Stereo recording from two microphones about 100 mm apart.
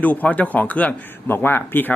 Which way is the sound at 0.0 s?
15° left (ahead or behind).